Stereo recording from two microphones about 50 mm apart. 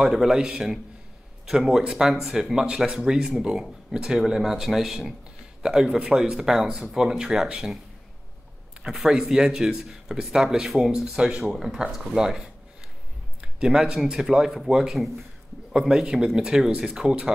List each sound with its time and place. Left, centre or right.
0.0 s speech: centre
8.8 s speech: centre